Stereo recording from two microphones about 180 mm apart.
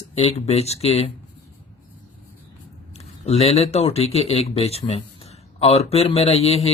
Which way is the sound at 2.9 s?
35° left (ahead or behind).